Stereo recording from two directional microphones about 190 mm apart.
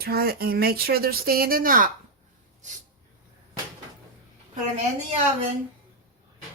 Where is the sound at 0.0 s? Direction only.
55° right (ahead or behind).